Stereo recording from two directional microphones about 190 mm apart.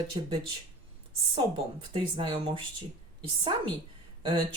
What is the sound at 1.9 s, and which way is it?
Speech, 25° right (ahead or behind).